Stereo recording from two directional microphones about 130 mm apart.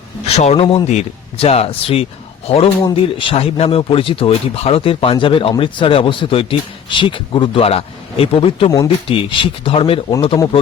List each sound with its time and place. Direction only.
0.3 s speech: 50° left (ahead or behind)
10.1 s speech: 35° left (ahead or behind)